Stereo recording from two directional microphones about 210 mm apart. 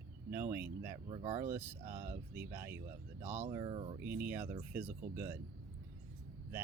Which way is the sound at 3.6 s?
25° right (ahead or behind).